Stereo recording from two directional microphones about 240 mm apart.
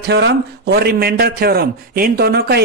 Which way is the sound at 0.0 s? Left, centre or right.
Right.